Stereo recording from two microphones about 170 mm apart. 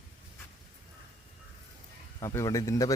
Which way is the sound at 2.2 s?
20° left (ahead or behind).